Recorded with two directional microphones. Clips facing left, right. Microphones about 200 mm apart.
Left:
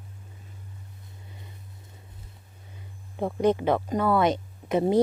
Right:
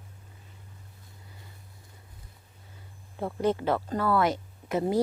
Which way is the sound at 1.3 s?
20° left (ahead or behind).